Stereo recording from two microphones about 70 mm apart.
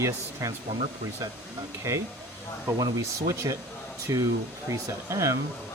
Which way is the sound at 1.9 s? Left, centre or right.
Right.